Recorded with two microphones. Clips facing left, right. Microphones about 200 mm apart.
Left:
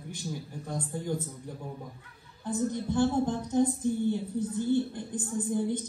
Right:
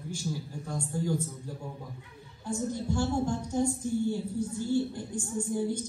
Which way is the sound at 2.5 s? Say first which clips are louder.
Left 2 dB; 20° left (ahead or behind).